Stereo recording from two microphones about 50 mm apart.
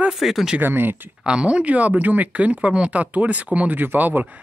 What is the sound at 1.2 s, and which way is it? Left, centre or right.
Speech, centre.